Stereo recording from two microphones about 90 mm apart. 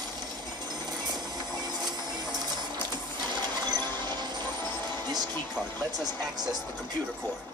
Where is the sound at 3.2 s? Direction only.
50° right (ahead or behind).